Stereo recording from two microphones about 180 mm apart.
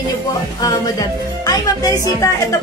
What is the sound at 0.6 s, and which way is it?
A woman's voice, 20° left (ahead or behind).